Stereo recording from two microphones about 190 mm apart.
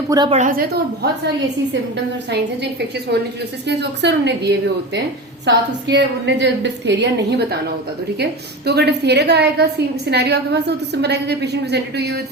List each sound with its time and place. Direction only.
0.1 s a woman's voice: 20° right (ahead or behind)
0.3 s a woman's voice: 45° right (ahead or behind)
3.7 s a woman's voice: 65° right (ahead or behind)